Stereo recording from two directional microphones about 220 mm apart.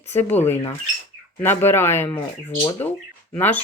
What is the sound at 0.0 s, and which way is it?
Speech, 10° left (ahead or behind).